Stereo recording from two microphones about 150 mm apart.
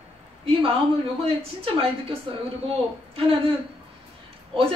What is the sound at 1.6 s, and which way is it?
Speech, 40° right (ahead or behind).